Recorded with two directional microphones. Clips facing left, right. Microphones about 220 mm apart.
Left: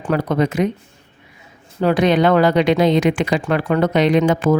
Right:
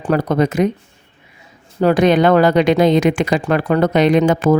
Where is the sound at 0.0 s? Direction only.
40° right (ahead or behind).